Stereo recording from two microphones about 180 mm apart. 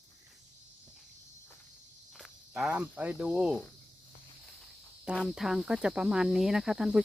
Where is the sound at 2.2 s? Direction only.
Centre (ahead or behind).